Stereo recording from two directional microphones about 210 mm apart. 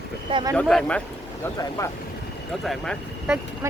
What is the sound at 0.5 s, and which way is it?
Speech, 5° left (ahead or behind).